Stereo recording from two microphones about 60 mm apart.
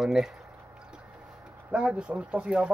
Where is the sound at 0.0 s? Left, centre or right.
Centre.